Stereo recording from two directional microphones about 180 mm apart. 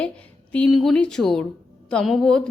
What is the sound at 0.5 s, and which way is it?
A woman's voice, 5° left (ahead or behind).